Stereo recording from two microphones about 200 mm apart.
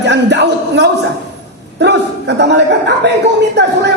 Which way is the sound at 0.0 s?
60° right (ahead or behind).